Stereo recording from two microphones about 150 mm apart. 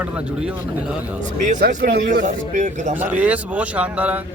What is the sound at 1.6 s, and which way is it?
Speech, 75° right (ahead or behind).